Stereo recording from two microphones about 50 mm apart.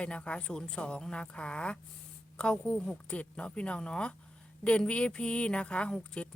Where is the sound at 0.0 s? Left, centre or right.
Left.